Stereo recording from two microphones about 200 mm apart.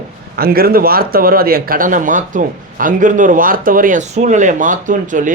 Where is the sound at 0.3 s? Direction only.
50° right (ahead or behind).